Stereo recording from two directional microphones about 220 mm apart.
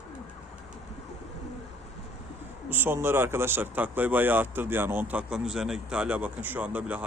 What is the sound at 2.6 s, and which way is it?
Speech, 10° right (ahead or behind).